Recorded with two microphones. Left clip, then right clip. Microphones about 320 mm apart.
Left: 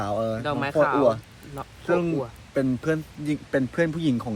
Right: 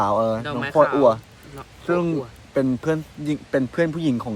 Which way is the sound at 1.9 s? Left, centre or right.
Centre.